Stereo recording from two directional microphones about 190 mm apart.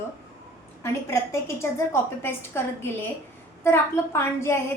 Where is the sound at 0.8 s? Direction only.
15° left (ahead or behind).